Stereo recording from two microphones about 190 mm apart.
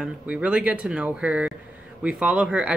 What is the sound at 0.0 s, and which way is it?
Speech, 5° right (ahead or behind).